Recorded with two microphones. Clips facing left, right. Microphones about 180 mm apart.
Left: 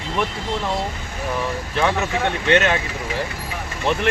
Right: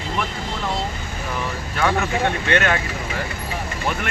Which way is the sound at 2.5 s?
20° left (ahead or behind).